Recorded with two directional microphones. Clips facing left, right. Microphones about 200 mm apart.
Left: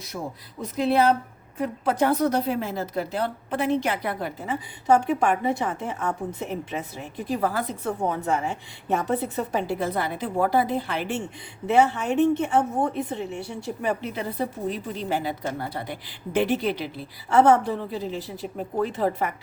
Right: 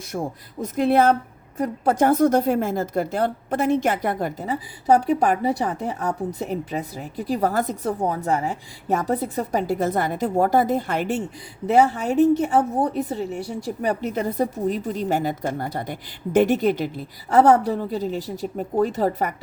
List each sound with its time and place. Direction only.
0.1 s a woman's voice: 55° right (ahead or behind)